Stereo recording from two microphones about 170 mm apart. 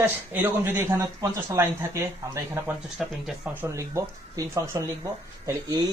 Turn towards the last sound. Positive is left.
turn(degrees=-20)  # may be behind; listen again after turning